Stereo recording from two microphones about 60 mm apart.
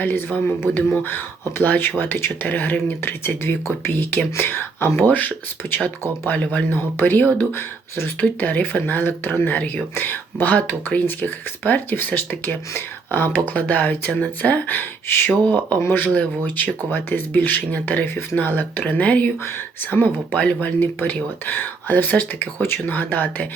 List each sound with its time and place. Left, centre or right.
0.0 s speech: left
2.5 s speech: left
6.7 s speech: left
13.5 s speech: left
16.0 s speech: left
18.0 s speech: left
18.3 s speech: left
22.6 s speech: left